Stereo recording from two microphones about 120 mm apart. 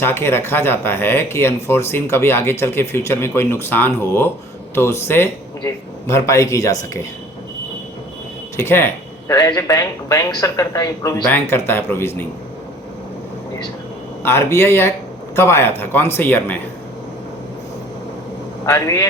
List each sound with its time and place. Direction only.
0.0 s speech: 20° left (ahead or behind)
8.5 s a sound: 20° left (ahead or behind)
9.3 s speech: 30° left (ahead or behind)
11.3 s speech: 15° left (ahead or behind)
14.3 s speech: 20° left (ahead or behind)
18.6 s speech: 30° left (ahead or behind)